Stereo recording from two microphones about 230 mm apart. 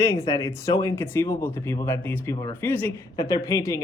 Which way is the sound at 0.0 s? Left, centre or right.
Centre.